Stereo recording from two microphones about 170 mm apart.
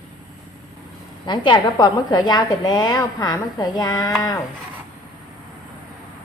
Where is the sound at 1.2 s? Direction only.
25° left (ahead or behind).